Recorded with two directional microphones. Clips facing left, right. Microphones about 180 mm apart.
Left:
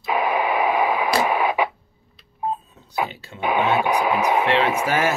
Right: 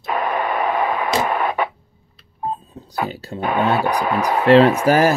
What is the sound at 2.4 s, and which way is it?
Telephone dialing, 35° right (ahead or behind).